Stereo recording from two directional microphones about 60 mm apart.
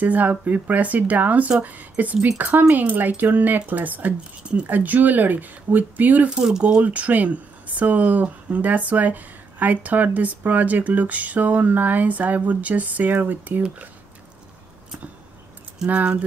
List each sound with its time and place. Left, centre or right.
0.0 s speech: right
6.3 s speech: centre
6.6 s speech: right
15.9 s speech: right